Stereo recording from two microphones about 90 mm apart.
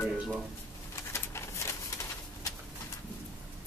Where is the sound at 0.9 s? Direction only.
30° left (ahead or behind).